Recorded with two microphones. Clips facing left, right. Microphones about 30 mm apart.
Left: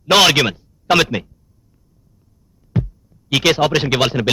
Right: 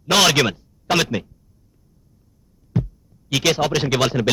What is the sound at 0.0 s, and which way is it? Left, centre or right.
Speech, left.